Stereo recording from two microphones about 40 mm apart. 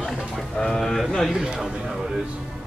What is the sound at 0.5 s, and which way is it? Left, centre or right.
Speech, centre.